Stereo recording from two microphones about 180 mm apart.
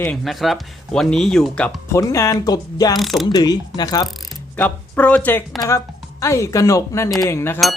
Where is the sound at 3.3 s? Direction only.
20° left (ahead or behind).